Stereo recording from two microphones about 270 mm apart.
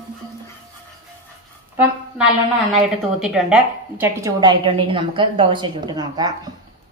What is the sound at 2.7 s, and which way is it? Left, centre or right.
A woman's voice, centre.